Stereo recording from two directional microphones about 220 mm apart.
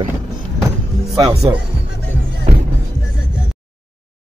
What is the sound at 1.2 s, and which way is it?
Speech, 15° right (ahead or behind).